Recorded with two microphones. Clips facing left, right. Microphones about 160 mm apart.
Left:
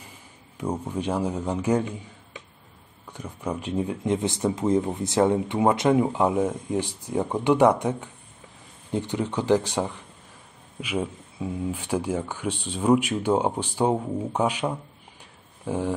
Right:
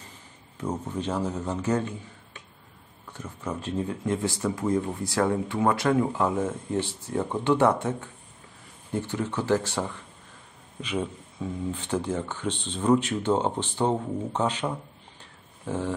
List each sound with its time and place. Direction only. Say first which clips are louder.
0.6 s speech: left 2 dB; 10° left (ahead or behind)
3.1 s speech: left 3 dB; 15° left (ahead or behind)